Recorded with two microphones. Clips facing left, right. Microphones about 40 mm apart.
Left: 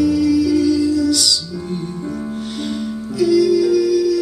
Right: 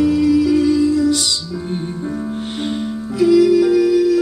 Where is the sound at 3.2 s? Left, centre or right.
Right.